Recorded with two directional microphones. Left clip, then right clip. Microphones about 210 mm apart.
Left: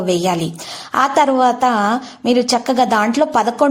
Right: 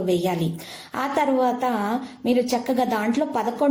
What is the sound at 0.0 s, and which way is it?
A woman's voice, 25° left (ahead or behind).